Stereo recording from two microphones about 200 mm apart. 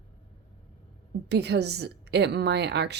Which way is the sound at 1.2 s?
60° right (ahead or behind).